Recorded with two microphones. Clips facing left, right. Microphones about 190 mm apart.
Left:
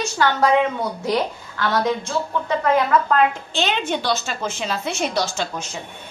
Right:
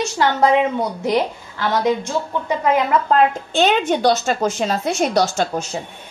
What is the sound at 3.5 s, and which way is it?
A woman's voice, 45° right (ahead or behind).